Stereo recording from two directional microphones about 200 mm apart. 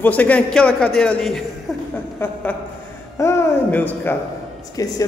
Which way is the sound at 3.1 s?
15° left (ahead or behind).